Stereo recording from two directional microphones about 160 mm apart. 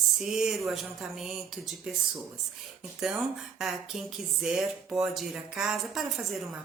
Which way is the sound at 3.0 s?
5° right (ahead or behind).